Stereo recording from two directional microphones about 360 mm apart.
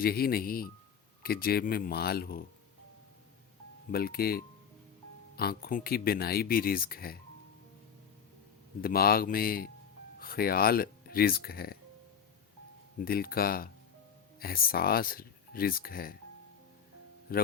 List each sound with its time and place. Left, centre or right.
0.0 s speech: left
3.9 s speech: left
8.8 s speech: left
13.0 s speech: left
17.3 s speech: left